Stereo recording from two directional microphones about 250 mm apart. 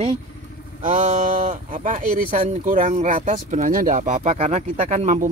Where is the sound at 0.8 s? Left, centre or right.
Right.